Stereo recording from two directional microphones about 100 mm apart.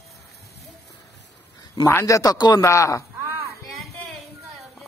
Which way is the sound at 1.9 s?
30° left (ahead or behind).